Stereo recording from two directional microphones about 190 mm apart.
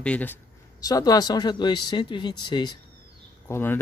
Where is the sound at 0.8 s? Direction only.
20° left (ahead or behind).